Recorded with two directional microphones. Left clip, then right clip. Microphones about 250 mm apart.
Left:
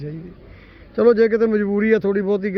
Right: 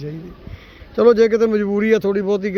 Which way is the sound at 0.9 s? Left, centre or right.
Centre.